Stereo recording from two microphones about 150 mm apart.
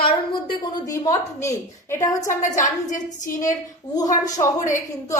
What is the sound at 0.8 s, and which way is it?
A woman's voice, 25° left (ahead or behind).